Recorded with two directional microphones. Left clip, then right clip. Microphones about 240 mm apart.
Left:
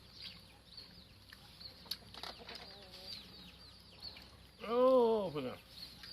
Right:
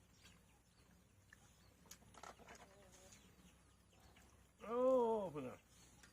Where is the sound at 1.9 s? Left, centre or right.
Centre.